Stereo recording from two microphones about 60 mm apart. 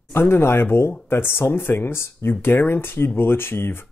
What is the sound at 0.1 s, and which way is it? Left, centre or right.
Speech, left.